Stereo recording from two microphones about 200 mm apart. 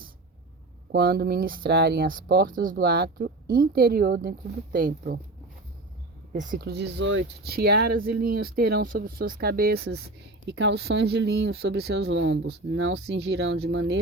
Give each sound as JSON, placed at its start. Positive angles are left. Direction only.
{"t": 0.9, "sound": "speech", "side_deg": -50}
{"t": 6.3, "sound": "speech", "side_deg": -40}
{"t": 7.5, "sound": "speech", "side_deg": -50}